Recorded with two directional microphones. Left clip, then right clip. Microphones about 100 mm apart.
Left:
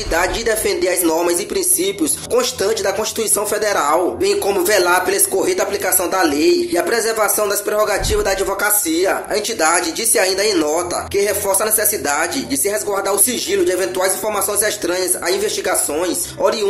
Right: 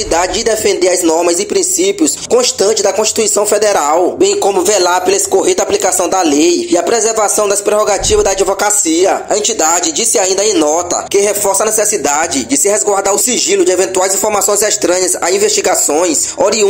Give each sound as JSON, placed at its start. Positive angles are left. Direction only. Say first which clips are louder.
{"t": 0.1, "sound": "speech", "louder": "right 4 dB", "side_deg": -55}